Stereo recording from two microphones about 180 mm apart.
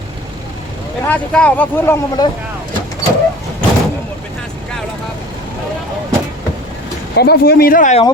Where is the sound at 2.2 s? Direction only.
20° left (ahead or behind).